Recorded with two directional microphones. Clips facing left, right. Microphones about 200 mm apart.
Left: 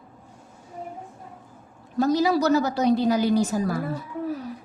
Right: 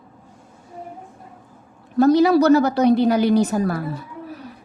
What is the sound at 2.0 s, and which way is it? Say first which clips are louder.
A woman's voice: right 7 dB; 65° right (ahead or behind).